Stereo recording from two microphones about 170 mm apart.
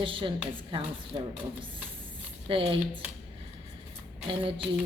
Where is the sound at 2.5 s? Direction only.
30° right (ahead or behind).